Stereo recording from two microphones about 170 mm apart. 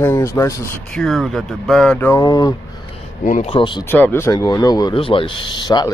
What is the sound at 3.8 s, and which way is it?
Speech, 15° left (ahead or behind).